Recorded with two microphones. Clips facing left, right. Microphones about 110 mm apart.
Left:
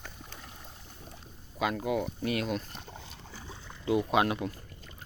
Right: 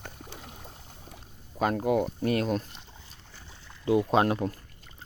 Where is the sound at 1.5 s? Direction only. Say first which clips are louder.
Right 5 dB; 45° right (ahead or behind).